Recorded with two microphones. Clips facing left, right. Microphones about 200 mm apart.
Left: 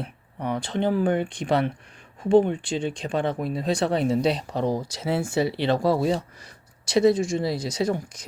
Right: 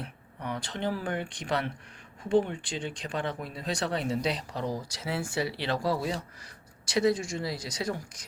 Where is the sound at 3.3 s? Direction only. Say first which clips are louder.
Left 10 dB; 55° left (ahead or behind).